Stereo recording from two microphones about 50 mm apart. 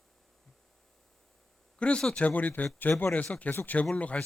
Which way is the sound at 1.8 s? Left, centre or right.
Left.